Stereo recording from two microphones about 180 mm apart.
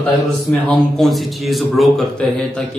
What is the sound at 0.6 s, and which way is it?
Speech, centre (ahead or behind).